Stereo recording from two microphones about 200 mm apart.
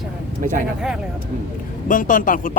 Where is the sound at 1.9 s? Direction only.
40° left (ahead or behind).